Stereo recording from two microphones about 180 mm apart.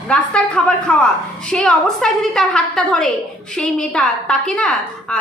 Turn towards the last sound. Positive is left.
turn(degrees=5)  # may be behind; listen again after turning